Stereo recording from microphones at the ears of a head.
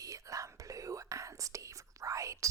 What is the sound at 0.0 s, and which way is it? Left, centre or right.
Whispering, right.